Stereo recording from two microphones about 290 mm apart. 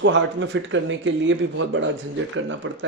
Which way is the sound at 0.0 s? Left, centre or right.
Right.